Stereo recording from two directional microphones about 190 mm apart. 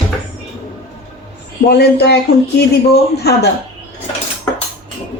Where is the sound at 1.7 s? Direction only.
60° left (ahead or behind).